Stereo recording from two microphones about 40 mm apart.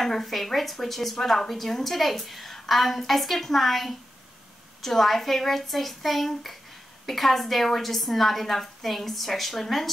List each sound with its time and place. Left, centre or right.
0.0 s a woman's voice: centre